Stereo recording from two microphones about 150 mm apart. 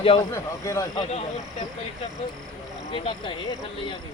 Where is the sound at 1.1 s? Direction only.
45° left (ahead or behind).